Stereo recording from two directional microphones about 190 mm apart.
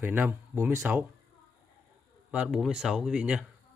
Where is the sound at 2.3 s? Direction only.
5° right (ahead or behind).